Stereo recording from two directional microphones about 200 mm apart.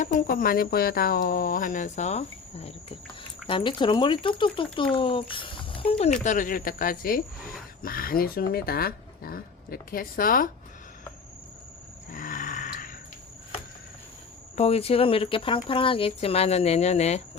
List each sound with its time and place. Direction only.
0.0 s speech: 40° left (ahead or behind); by 6.1 s 25° left (ahead or behind)
6.2 s speech: 40° left (ahead or behind)
12.1 s grunt: 45° left (ahead or behind)
14.5 s speech: 30° left (ahead or behind)